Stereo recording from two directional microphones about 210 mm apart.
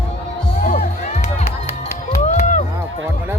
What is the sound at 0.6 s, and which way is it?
Music, 40° left (ahead or behind).